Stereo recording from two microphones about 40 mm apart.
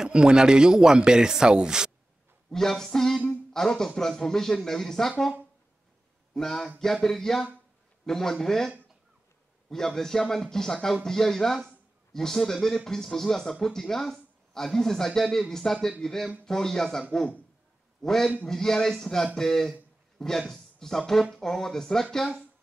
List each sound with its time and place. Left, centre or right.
0.0 s speech: right
2.5 s a man's voice: centre
6.3 s a man's voice: centre
18.0 s a man's voice: centre